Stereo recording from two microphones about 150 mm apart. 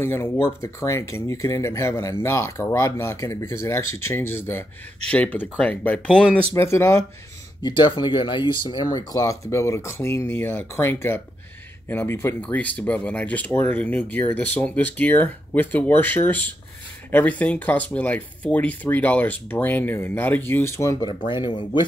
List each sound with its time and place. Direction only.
0.0 s speech: 15° left (ahead or behind)
7.6 s speech: 30° left (ahead or behind)
21.3 s speech: 30° left (ahead or behind)